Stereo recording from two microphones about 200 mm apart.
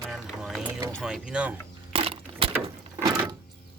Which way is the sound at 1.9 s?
30° right (ahead or behind).